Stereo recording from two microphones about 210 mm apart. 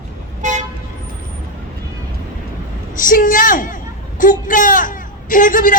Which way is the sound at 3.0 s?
40° left (ahead or behind).